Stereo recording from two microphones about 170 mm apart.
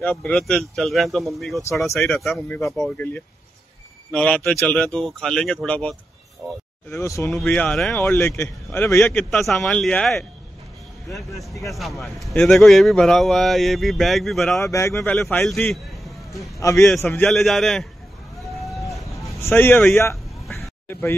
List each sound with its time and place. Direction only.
0.0 s speech: 10° left (ahead or behind)
2.8 s speech: 10° left (ahead or behind)
6.9 s speech: 15° left (ahead or behind)
8.0 s speech: 15° left (ahead or behind)
9.0 s speech: centre (ahead or behind)
11.7 s speech: centre (ahead or behind)
14.6 s speech: 15° left (ahead or behind)
15.2 s a man's voice: centre (ahead or behind)
16.5 s speech: 20° left (ahead or behind)
17.3 s speech: centre (ahead or behind)
18.7 s a sound: centre (ahead or behind)
18.9 s a sound: 20° left (ahead or behind)